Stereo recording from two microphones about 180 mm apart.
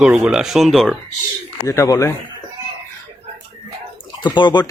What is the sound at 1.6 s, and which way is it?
Speech, 15° left (ahead or behind).